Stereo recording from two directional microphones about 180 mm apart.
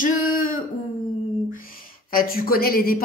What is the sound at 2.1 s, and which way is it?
Speech, 55° left (ahead or behind).